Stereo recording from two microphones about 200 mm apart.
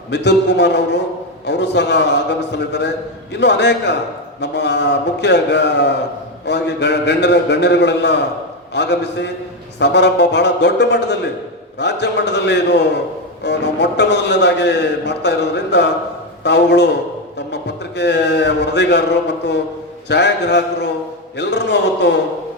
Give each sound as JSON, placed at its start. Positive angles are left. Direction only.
{"t": 0.1, "sound": "a man's voice", "side_deg": 60}